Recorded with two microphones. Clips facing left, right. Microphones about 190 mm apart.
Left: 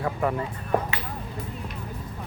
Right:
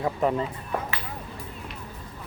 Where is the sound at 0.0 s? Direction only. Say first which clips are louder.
Right 2 dB; 20° right (ahead or behind).